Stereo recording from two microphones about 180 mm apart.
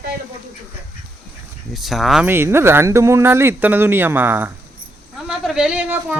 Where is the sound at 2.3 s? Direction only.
15° right (ahead or behind).